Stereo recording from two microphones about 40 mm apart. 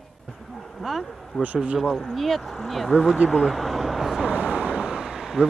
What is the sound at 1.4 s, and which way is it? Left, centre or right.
Speech, right.